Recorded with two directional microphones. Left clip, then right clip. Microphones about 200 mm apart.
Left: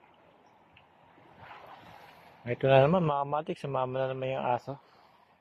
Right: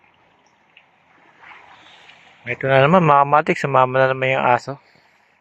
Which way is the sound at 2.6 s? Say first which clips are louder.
Right 9 dB; 15° right (ahead or behind).